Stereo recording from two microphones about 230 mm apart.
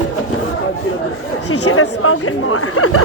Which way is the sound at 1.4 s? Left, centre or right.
Left.